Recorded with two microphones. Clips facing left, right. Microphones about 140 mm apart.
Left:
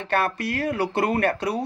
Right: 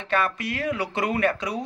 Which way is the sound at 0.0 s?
60° left (ahead or behind).